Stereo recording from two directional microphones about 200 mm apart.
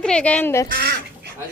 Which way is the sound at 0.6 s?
50° right (ahead or behind).